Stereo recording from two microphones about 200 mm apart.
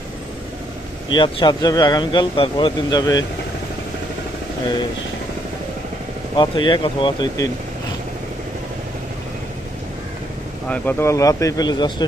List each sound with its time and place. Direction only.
1.1 s speech: 25° left (ahead or behind)
6.3 s speech: 25° left (ahead or behind)
10.7 s speech: 10° left (ahead or behind)